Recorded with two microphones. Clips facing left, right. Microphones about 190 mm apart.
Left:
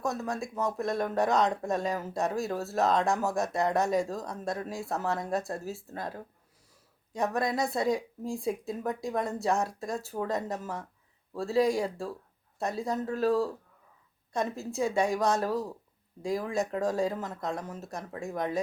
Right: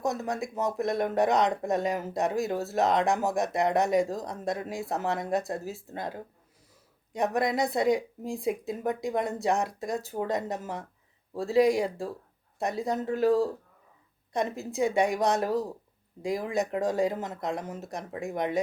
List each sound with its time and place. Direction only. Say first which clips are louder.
0.0 s speech: right 2 dB; 20° right (ahead or behind)